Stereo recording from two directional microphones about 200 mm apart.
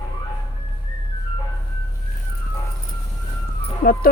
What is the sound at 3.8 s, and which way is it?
Speech, 45° left (ahead or behind).